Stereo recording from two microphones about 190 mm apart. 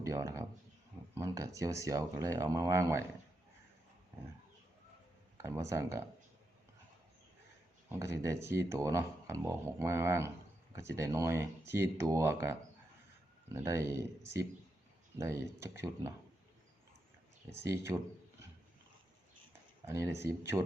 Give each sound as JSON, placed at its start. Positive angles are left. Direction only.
{"t": 0.0, "sound": "speech", "side_deg": -15}
{"t": 5.4, "sound": "speech", "side_deg": -15}
{"t": 7.9, "sound": "speech", "side_deg": -15}
{"t": 15.2, "sound": "speech", "side_deg": -15}
{"t": 17.6, "sound": "speech", "side_deg": -15}
{"t": 19.8, "sound": "speech", "side_deg": -15}